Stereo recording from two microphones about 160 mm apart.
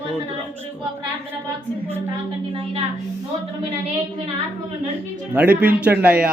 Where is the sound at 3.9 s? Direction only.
40° right (ahead or behind).